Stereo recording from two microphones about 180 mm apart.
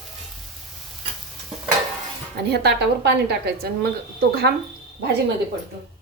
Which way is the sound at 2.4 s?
65° right (ahead or behind).